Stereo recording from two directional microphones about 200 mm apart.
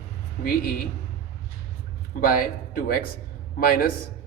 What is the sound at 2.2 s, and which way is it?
Speech, 45° left (ahead or behind).